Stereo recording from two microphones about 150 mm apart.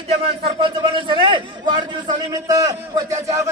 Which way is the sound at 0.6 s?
35° right (ahead or behind).